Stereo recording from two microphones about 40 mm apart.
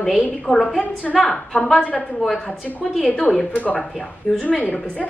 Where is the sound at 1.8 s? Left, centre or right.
Left.